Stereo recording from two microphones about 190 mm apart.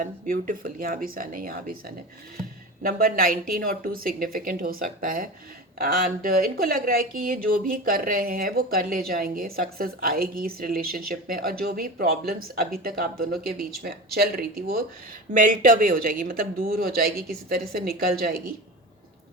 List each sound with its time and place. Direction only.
0.0 s speech: 45° right (ahead or behind)
2.8 s speech: 50° right (ahead or behind)